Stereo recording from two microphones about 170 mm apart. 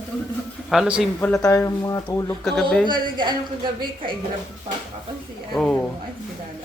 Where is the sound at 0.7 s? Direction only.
5° right (ahead or behind).